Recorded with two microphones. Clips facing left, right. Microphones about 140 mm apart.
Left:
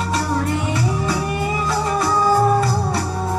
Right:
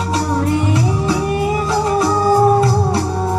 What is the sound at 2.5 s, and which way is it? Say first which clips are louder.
Music: right 4 dB; centre (ahead or behind).